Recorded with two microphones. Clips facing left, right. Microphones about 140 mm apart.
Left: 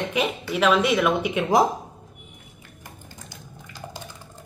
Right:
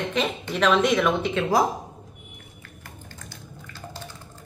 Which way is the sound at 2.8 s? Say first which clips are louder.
Even; 15° left (ahead or behind).